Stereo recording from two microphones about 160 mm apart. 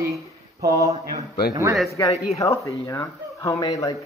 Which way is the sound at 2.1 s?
45° left (ahead or behind).